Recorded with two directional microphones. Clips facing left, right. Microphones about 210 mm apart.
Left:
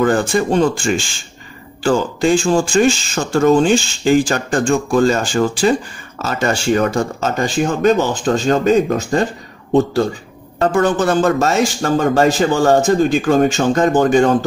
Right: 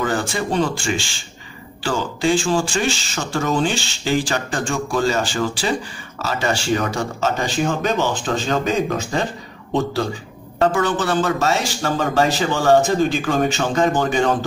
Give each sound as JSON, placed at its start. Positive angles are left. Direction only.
{"t": 0.0, "sound": "speech", "side_deg": 50}
{"t": 10.6, "sound": "speech", "side_deg": 45}